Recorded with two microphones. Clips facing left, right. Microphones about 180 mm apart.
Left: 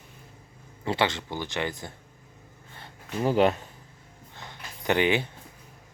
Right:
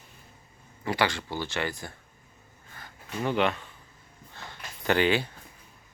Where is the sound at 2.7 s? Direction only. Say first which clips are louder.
Left 3 dB; 30° left (ahead or behind).